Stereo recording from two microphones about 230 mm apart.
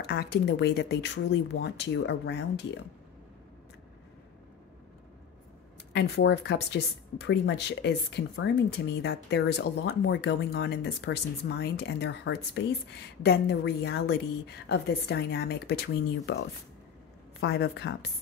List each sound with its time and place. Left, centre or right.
0.0 s speech: left
5.9 s speech: left